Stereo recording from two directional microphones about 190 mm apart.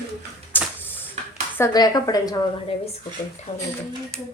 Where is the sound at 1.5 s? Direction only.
15° left (ahead or behind).